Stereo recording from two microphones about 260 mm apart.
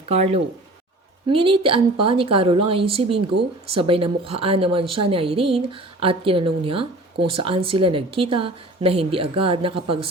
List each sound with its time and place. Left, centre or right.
0.1 s a woman's voice: right